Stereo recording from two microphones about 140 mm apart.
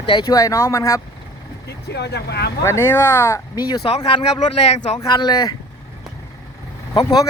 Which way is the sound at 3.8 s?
45° left (ahead or behind).